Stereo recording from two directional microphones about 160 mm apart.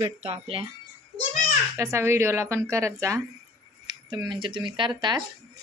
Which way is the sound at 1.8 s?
15° right (ahead or behind).